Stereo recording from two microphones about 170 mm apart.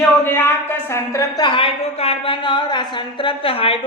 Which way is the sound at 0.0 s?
15° left (ahead or behind).